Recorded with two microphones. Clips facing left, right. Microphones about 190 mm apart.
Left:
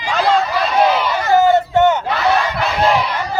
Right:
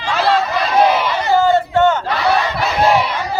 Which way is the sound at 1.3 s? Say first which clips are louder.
Left 1 dB; 20° left (ahead or behind).